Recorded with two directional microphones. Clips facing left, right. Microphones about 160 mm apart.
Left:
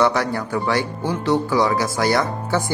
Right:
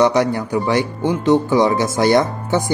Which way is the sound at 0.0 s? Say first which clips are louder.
Right 4 dB; 20° right (ahead or behind).